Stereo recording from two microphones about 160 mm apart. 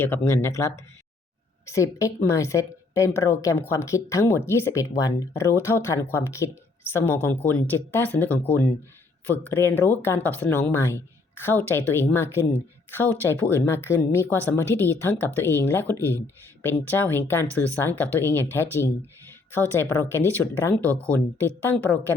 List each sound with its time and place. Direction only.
0.0 s a woman's voice: 15° left (ahead or behind)
19.5 s speech: 15° left (ahead or behind)